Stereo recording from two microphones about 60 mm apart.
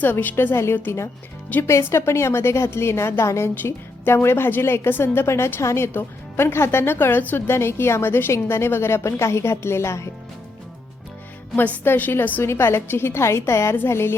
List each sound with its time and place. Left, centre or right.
0.0 s a woman's voice: left
0.5 s a woman's voice: left
3.5 s a woman's voice: left
7.4 s a woman's voice: left
11.5 s a woman's voice: left
12.5 s a woman's voice: left